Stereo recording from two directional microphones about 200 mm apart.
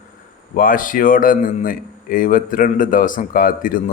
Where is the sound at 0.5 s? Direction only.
45° left (ahead or behind).